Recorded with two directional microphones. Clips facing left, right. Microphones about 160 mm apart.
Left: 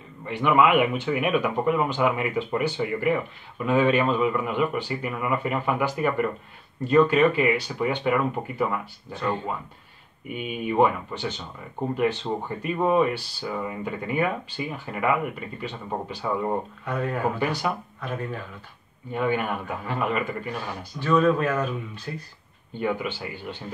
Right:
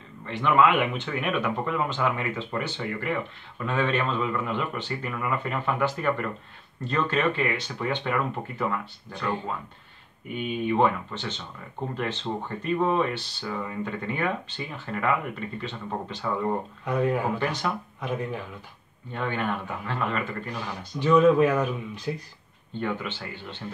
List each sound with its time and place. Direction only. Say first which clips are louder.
0.2 s speech: left 1 dB; 10° left (ahead or behind)
10.3 s speech: even; 10° left (ahead or behind)
16.8 s speech: right 8 dB; 15° right (ahead or behind)
17.4 s speech: left 2 dB; 10° left (ahead or behind)
18.0 s speech: right 1 dB; 15° right (ahead or behind)
19.1 s speech: left 3 dB; 10° left (ahead or behind)
21.0 s speech: right 3 dB; 15° right (ahead or behind)
22.8 s speech: left 3 dB; 10° left (ahead or behind)